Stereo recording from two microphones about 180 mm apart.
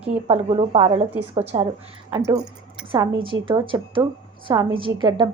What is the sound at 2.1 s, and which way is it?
Speech, 20° right (ahead or behind).